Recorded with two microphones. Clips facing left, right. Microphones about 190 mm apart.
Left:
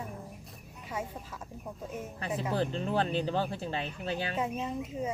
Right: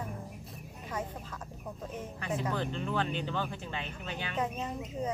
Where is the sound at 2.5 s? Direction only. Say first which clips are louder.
Left 3 dB; 35° left (ahead or behind).